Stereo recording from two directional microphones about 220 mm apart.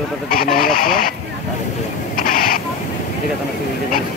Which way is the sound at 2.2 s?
40° left (ahead or behind).